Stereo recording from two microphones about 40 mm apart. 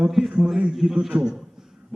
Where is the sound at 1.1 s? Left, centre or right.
Right.